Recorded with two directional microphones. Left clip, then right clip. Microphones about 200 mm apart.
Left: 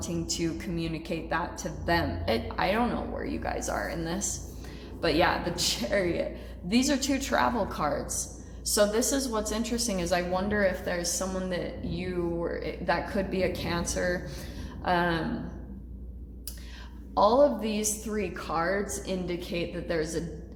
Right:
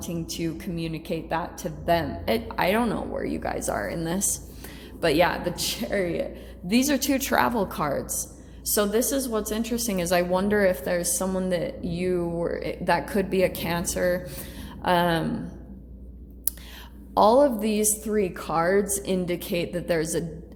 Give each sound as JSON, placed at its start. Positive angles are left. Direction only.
{"t": 0.3, "sound": "a woman's voice", "side_deg": -25}
{"t": 17.2, "sound": "a woman's voice", "side_deg": -45}